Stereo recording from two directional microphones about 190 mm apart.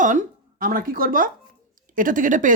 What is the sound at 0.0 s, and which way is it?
A woman's voice, 40° right (ahead or behind).